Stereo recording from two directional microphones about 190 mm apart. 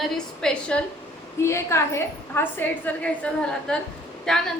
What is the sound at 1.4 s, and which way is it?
A woman's voice, 15° left (ahead or behind).